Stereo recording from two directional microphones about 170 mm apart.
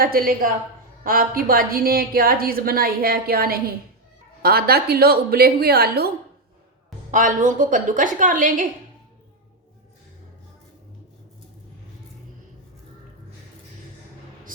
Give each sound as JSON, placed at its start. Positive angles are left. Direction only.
{"t": 0.0, "sound": "a woman's voice", "side_deg": -60}
{"t": 7.1, "sound": "a woman's voice", "side_deg": -50}